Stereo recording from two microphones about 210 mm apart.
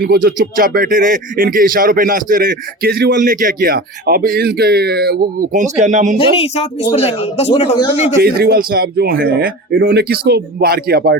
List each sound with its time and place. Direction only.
0.0 s speech: 45° right (ahead or behind)
6.1 s speech: 30° left (ahead or behind)
8.2 s speech: 50° right (ahead or behind)